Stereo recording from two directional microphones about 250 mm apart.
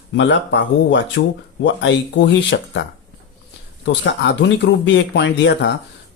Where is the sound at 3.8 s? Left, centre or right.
Left.